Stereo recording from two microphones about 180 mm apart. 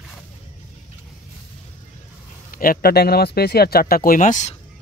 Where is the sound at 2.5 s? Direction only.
55° left (ahead or behind).